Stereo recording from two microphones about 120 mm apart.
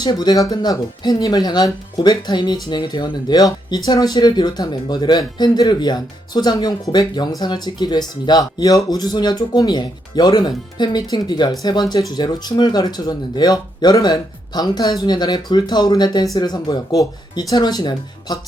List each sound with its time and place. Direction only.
0.0 s speech: 35° left (ahead or behind)